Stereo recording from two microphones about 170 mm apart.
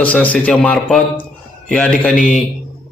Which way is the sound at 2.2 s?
50° left (ahead or behind).